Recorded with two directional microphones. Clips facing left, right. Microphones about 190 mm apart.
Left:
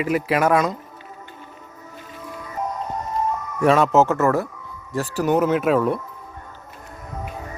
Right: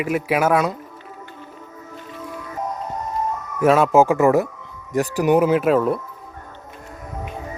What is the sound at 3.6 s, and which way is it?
Speech, 5° right (ahead or behind).